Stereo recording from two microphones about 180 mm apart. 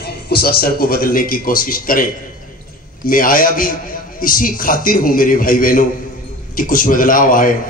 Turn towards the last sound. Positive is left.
turn(degrees=50)  # may be behind; listen again after turning